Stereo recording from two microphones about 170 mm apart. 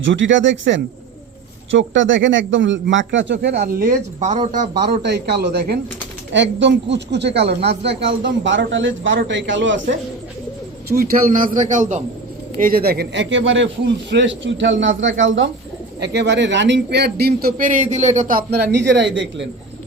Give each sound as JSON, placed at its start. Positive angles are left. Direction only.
{"t": 0.0, "sound": "speech", "side_deg": -90}
{"t": 4.8, "sound": "a man's voice", "side_deg": -70}
{"t": 6.3, "sound": "speech", "side_deg": -90}
{"t": 10.9, "sound": "a man's voice", "side_deg": -55}
{"t": 12.5, "sound": "a man's voice", "side_deg": -60}